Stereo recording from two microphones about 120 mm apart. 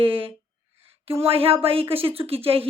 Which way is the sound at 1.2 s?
50° right (ahead or behind).